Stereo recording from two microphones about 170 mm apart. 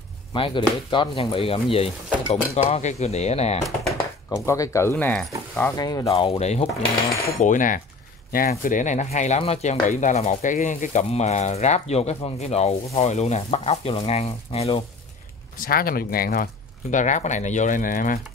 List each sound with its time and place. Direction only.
0.3 s speech: 30° left (ahead or behind)
3.6 s typing: centre (ahead or behind)
4.5 s speech: 15° left (ahead or behind)
5.8 s speech: 20° left (ahead or behind)
6.1 s speech: 35° left (ahead or behind)
15.5 s speech: 55° left (ahead or behind)
16.9 s speech: 45° left (ahead or behind)